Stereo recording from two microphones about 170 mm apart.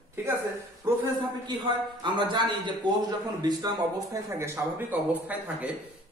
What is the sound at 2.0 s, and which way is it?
Speech, 25° right (ahead or behind).